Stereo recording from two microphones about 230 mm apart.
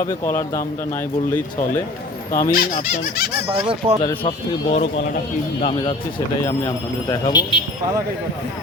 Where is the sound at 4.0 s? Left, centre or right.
Left.